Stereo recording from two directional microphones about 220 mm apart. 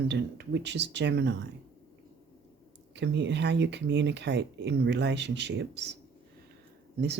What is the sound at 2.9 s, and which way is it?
Speech, 50° right (ahead or behind).